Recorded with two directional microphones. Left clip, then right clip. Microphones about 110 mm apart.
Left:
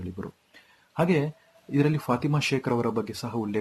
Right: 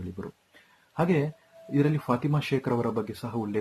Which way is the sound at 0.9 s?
25° left (ahead or behind).